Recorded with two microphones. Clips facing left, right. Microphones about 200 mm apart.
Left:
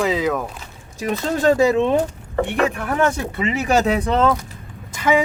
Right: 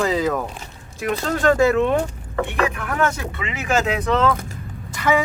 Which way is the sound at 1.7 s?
25° left (ahead or behind).